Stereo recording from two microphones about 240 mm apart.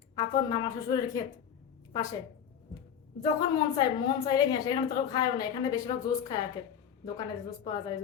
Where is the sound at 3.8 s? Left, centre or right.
Centre.